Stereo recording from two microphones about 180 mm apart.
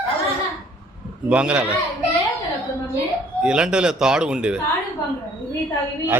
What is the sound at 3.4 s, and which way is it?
A man's voice, 5° right (ahead or behind).